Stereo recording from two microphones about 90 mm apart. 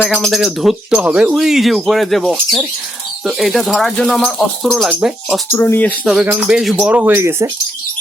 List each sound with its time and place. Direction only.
0.3 s speech: 5° right (ahead or behind)
4.9 s speech: 15° right (ahead or behind)
5.5 s speech: 30° left (ahead or behind)
6.5 s speech: 5° right (ahead or behind)
6.8 s speech: 20° right (ahead or behind)